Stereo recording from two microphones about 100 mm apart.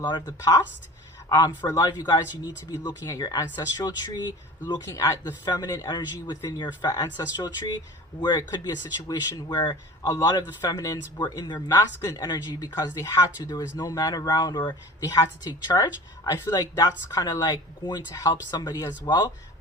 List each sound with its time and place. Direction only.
0.0 s speech: 40° left (ahead or behind)
8.2 s speech: 40° left (ahead or behind)
10.1 s speech: 35° left (ahead or behind)
11.2 s speech: 45° left (ahead or behind)
11.7 s speech: 30° left (ahead or behind)